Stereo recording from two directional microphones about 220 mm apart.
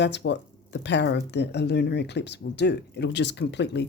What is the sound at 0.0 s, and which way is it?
Speech, 50° left (ahead or behind).